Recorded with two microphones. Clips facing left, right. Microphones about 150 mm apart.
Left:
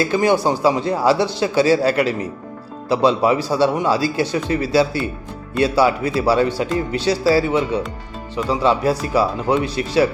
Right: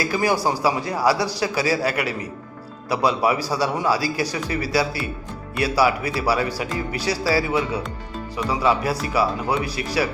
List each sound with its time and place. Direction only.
0.0 s speech: 25° left (ahead or behind)